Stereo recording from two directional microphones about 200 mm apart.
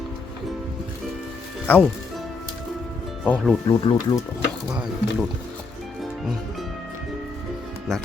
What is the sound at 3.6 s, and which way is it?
Speech, 20° left (ahead or behind).